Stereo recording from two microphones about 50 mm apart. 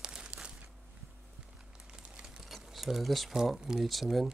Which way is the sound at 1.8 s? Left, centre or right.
Centre.